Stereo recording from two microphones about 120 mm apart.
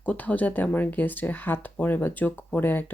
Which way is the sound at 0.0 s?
10° left (ahead or behind).